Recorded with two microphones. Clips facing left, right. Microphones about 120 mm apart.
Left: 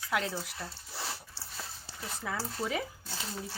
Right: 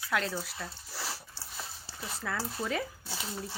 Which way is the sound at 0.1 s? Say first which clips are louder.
Even; 15° left (ahead or behind).